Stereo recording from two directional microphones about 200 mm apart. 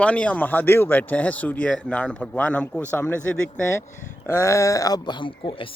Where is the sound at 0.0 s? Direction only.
5° left (ahead or behind).